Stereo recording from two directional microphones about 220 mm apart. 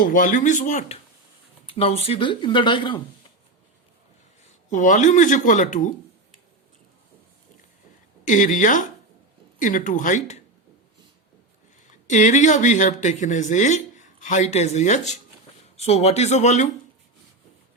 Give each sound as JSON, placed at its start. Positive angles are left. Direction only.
{"t": 0.0, "sound": "speech", "side_deg": 40}
{"t": 4.7, "sound": "speech", "side_deg": 35}
{"t": 8.2, "sound": "speech", "side_deg": 35}
{"t": 12.0, "sound": "speech", "side_deg": 35}